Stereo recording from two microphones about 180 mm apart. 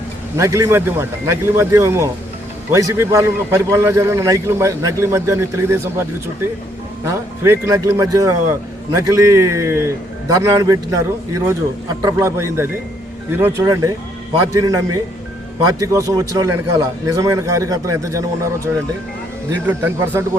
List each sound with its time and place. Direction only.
0.3 s a man's voice: 15° right (ahead or behind)